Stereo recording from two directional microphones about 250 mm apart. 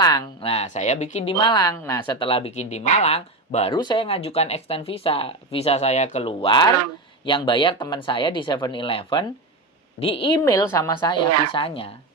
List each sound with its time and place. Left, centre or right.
0.0 s a woman's voice: centre